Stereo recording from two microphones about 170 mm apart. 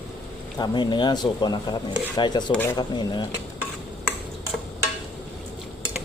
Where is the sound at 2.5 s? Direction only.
10° left (ahead or behind).